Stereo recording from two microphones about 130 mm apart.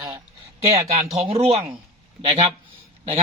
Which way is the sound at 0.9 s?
50° right (ahead or behind).